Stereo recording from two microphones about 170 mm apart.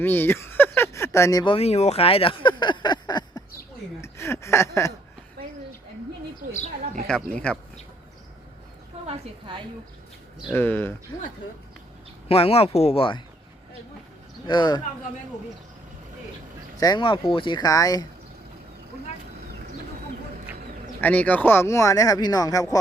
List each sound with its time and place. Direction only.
0.0 s a sound: 10° left (ahead or behind)
1.5 s a sound: 40° left (ahead or behind); by 4.9 s 15° left (ahead or behind)
7.1 s speech: 5° left (ahead or behind)
9.0 s a sound: 30° right (ahead or behind)
10.5 s speech: 10° left (ahead or behind)
12.3 s speech: 35° left (ahead or behind)
14.4 s speech: 25° left (ahead or behind)
16.8 s speech: 30° left (ahead or behind)
21.0 s speech: 10° left (ahead or behind)